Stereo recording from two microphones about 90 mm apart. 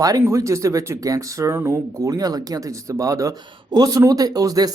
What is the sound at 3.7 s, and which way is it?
Speech, 45° right (ahead or behind).